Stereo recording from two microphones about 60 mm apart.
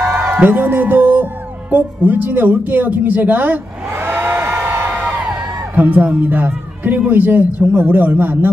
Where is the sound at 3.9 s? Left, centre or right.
Right.